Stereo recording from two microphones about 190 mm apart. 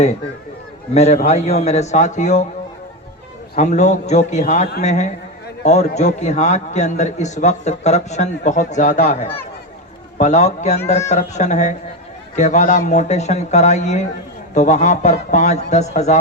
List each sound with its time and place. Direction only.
0.9 s a man's voice: 35° left (ahead or behind)
3.6 s a man's voice: 40° left (ahead or behind)